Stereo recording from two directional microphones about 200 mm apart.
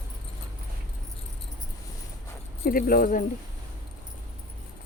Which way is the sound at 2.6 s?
45° left (ahead or behind).